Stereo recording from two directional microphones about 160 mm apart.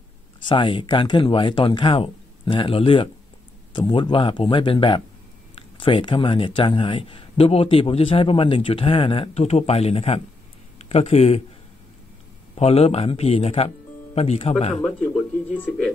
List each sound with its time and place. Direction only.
0.5 s speech: 30° left (ahead or behind)
12.5 s speech: 40° left (ahead or behind)
14.8 s speech: 10° left (ahead or behind)